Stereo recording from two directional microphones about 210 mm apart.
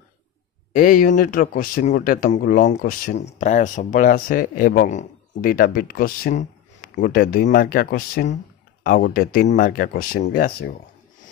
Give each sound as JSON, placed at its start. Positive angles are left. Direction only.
{"t": 0.7, "sound": "speech", "side_deg": 40}